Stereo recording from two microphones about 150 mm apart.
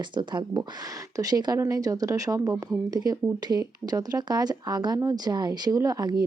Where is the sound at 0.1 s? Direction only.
30° right (ahead or behind).